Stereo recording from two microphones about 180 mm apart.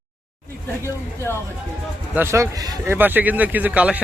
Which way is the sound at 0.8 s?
15° left (ahead or behind).